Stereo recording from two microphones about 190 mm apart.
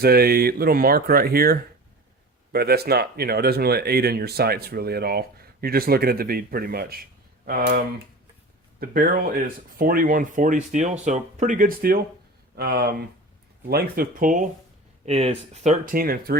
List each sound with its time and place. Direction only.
0.0 s speech: 55° right (ahead or behind)
8.8 s speech: 50° right (ahead or behind)
15.0 s speech: 35° right (ahead or behind); by 16.4 s 50° right (ahead or behind)